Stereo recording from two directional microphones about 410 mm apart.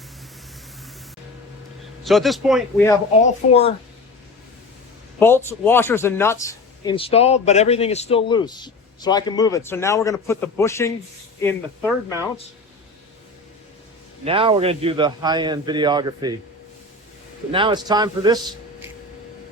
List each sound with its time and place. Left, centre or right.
2.0 s a man's voice: centre
3.4 s speech: left
5.2 s a man's voice: centre
14.3 s a man's voice: centre
17.5 s a man's voice: centre